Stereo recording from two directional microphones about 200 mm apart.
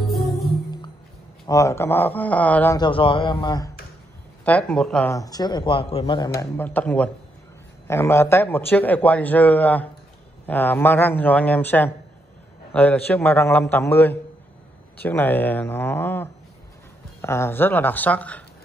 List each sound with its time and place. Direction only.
0.0 s music: centre (ahead or behind)
1.4 s a man's voice: 15° left (ahead or behind)
2.8 s speech: 25° left (ahead or behind)
4.5 s speech: 5° left (ahead or behind)
5.1 s a man's voice: 20° left (ahead or behind)